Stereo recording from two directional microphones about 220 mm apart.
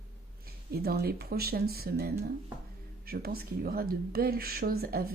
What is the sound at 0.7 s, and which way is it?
Speech, 45° right (ahead or behind).